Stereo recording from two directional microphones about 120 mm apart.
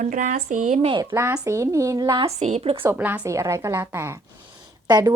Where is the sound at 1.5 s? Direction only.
25° right (ahead or behind).